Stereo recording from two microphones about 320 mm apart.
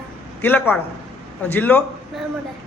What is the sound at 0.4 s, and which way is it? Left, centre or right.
A man's voice, centre.